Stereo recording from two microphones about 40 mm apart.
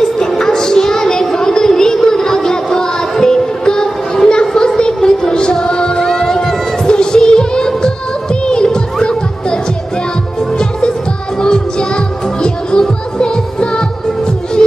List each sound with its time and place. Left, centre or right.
0.3 s a sound: centre
6.9 s music: left
11.4 s music: left